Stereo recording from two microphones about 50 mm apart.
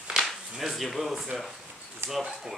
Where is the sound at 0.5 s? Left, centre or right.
Centre.